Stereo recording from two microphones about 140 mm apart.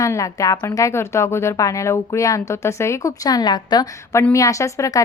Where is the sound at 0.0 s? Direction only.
20° left (ahead or behind).